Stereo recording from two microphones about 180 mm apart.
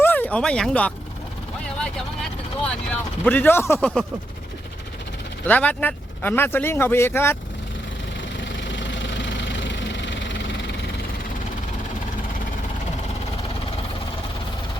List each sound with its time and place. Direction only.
0.0 s speech: 10° left (ahead or behind)
3.2 s speech: 10° left (ahead or behind)
5.5 s speech: 10° left (ahead or behind)
8.5 s vehicle: 90° left